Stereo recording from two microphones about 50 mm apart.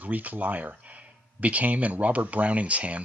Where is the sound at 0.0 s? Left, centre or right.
Right.